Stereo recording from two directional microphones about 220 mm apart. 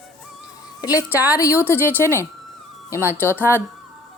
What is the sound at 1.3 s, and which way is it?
Speech, 15° left (ahead or behind).